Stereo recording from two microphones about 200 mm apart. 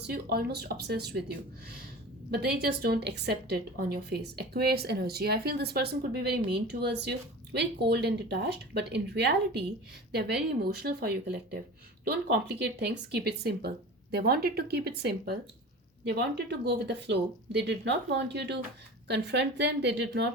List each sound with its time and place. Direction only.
0.0 s a woman's voice: 50° right (ahead or behind)
2.3 s a woman's voice: 55° right (ahead or behind)